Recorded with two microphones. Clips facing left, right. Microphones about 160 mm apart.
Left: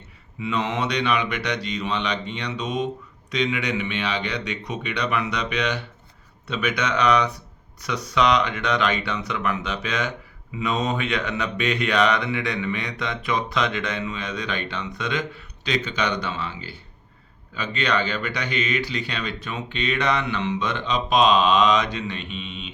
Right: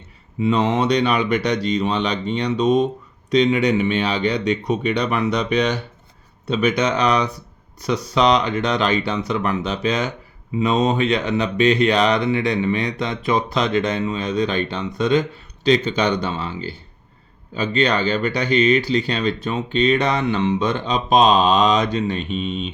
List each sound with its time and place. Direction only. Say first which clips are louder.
0.3 s speech: right 7 dB; 35° right (ahead or behind)